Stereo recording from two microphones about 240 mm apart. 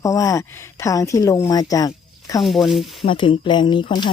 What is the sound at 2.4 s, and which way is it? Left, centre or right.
Speech, centre.